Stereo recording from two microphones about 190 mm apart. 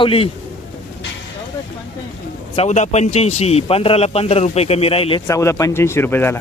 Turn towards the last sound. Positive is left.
turn(degrees=10)  # may be behind; listen again after turning